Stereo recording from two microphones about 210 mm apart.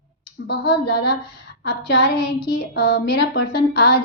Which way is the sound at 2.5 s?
45° left (ahead or behind).